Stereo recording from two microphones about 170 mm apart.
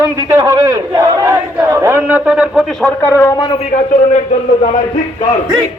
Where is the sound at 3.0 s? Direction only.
15° left (ahead or behind).